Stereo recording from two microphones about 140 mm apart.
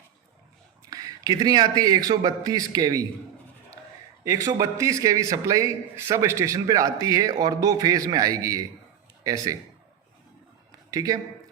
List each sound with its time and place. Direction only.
0.9 s a man's voice: 25° right (ahead or behind)
4.2 s a man's voice: 25° right (ahead or behind)
10.9 s a man's voice: 25° right (ahead or behind)